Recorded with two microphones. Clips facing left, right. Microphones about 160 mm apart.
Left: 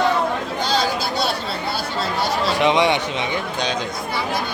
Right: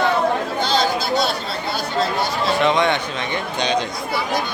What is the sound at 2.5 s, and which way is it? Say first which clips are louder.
Speech: left 1 dB; 15° left (ahead or behind).